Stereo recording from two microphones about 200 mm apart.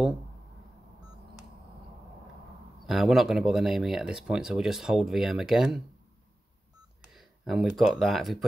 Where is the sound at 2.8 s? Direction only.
Centre (ahead or behind).